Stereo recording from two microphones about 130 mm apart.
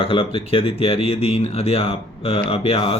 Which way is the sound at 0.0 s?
45° left (ahead or behind).